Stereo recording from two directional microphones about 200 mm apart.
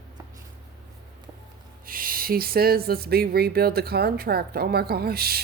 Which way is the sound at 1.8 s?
45° right (ahead or behind).